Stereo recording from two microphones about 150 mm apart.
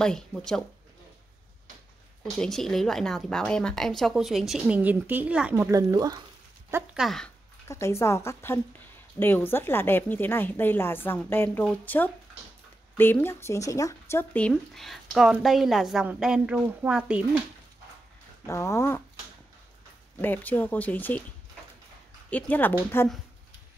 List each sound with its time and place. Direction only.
0.0 s speech: 5° left (ahead or behind)
2.3 s speech: centre (ahead or behind); by 6.2 s 25° right (ahead or behind)
6.7 s speech: 5° right (ahead or behind)
7.6 s a woman's voice: 20° left (ahead or behind)
14.3 s speech: 5° left (ahead or behind)
18.5 s a sound: 20° left (ahead or behind)
20.2 s a woman's voice: 10° left (ahead or behind)
22.3 s a woman's voice: 10° left (ahead or behind)